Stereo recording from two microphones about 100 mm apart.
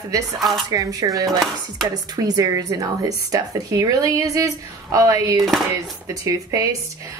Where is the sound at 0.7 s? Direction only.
35° right (ahead or behind).